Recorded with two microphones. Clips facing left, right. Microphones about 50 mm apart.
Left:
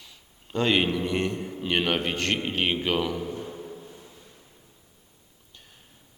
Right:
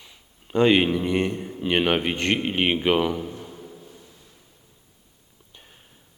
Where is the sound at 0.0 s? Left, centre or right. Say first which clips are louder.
Right 1 dB; centre.